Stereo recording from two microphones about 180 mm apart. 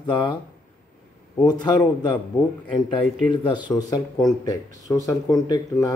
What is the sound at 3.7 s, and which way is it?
Speech, 10° left (ahead or behind).